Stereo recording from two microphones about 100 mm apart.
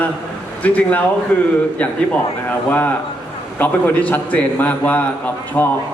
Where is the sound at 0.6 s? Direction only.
15° left (ahead or behind).